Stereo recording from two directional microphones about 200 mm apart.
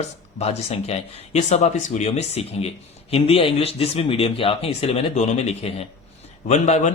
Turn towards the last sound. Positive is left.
turn(degrees=35)  # may be behind; listen again after turning